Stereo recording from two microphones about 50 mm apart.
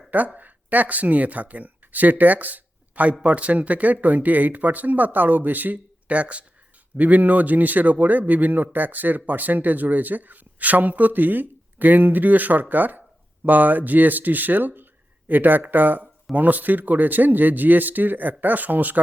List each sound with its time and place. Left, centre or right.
0.3 s a man's voice: right